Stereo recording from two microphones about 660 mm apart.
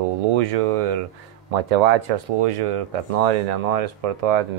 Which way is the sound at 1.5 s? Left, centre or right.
Right.